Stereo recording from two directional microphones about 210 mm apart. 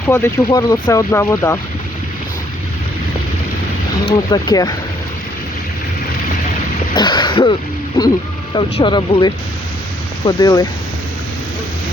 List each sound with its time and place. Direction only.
0.1 s speech: 15° left (ahead or behind)
4.3 s speech: 20° left (ahead or behind)
6.9 s speech: 20° left (ahead or behind)
8.5 s speech: 20° left (ahead or behind)